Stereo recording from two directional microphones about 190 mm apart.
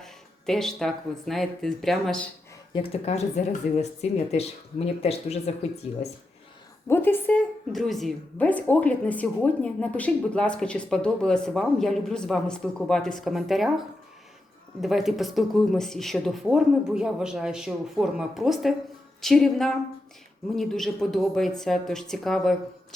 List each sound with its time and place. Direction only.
0.0 s speech: centre (ahead or behind)
2.8 s speech: 30° left (ahead or behind)
3.6 s a woman's voice: 5° right (ahead or behind)
4.0 s speech: 35° left (ahead or behind)
6.8 s a woman's voice: 10° left (ahead or behind)